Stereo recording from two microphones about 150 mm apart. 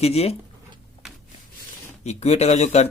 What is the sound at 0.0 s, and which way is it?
Speech, 45° left (ahead or behind).